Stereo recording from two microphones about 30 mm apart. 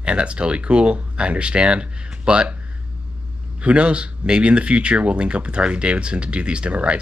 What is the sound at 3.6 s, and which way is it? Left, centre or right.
Speech, right.